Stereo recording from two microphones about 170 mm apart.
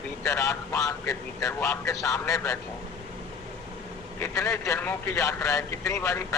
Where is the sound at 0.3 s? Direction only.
15° left (ahead or behind).